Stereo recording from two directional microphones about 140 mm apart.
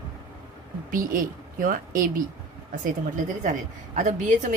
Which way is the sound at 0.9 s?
80° right.